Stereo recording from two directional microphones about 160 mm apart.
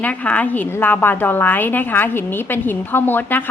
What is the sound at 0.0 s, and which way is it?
A woman's voice, 10° left (ahead or behind).